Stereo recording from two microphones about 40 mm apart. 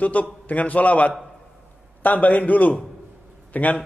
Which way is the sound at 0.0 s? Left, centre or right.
Left.